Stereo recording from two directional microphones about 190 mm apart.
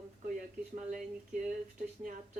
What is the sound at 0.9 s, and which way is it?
Speech, 45° right (ahead or behind).